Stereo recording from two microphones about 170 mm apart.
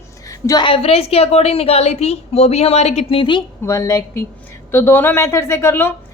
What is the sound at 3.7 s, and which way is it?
A woman's voice, 15° left (ahead or behind).